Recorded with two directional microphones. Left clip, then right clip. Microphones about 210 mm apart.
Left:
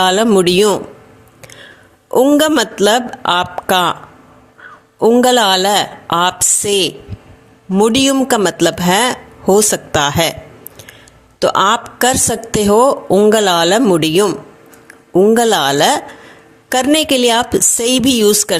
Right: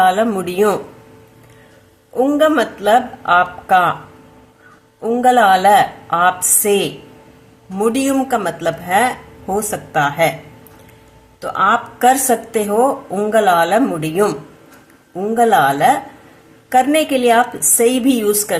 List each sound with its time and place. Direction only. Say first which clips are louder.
0.0 s a woman's voice: left 3 dB; 45° left (ahead or behind)
2.2 s a woman's voice: even; 45° left (ahead or behind)
4.9 s a woman's voice: left 2 dB; 40° left (ahead or behind)
7.9 s a woman's voice: left 2 dB; 45° left (ahead or behind)
11.3 s a woman's voice: left 3 dB; 45° left (ahead or behind)